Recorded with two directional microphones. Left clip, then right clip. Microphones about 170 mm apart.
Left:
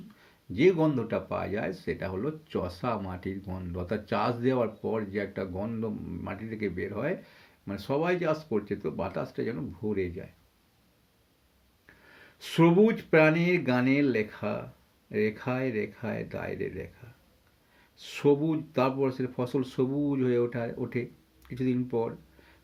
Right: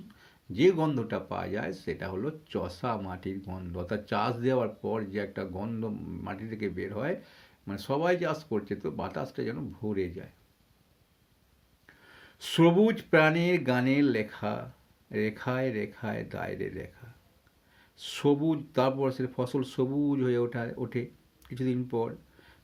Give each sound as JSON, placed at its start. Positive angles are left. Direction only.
{"t": 0.2, "sound": "speech", "side_deg": -25}
{"t": 12.0, "sound": "speech", "side_deg": -20}
{"t": 17.9, "sound": "speech", "side_deg": -25}